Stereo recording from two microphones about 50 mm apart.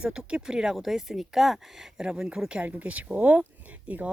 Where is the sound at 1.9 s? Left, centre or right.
Centre.